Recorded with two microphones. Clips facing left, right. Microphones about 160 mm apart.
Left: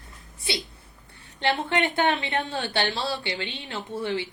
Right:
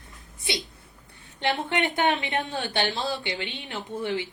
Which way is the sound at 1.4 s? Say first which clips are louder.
Left 1 dB; 20° right (ahead or behind).